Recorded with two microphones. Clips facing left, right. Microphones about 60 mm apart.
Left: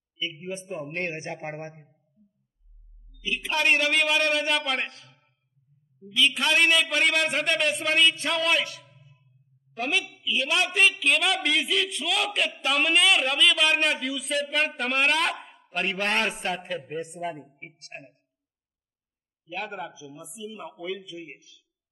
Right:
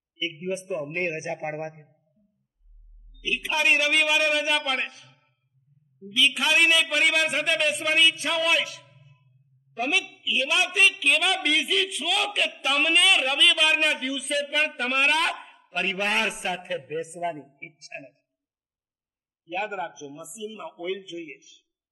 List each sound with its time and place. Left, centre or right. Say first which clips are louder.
0.2 s a man's voice: right 4 dB; centre
0.7 s a man's voice: right 3 dB; centre
1.0 s a man's voice: right 3 dB; centre
3.4 s a man's voice: even; centre
19.5 s a man's voice: right 4 dB; centre